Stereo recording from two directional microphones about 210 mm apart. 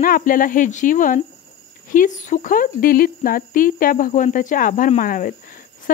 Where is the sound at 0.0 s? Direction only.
40° left (ahead or behind).